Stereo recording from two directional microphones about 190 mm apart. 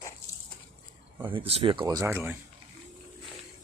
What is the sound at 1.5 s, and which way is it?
Speech, 30° right (ahead or behind).